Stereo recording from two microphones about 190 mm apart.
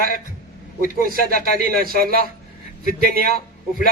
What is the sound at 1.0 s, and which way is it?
A man's voice, 50° right (ahead or behind).